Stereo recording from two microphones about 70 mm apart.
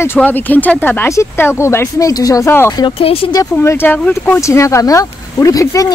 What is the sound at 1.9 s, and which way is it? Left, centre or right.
Speech, left.